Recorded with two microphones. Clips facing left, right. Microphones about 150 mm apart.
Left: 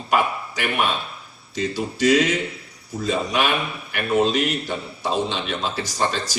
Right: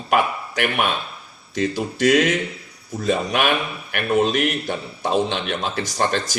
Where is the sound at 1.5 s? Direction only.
55° right (ahead or behind).